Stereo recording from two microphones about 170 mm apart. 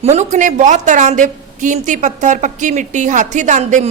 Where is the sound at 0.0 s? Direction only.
40° right (ahead or behind).